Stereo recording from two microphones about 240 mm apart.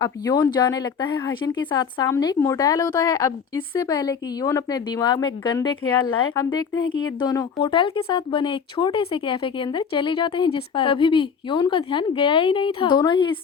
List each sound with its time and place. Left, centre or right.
0.0 s speech: centre